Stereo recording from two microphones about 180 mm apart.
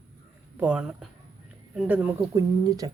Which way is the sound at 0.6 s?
5° right (ahead or behind).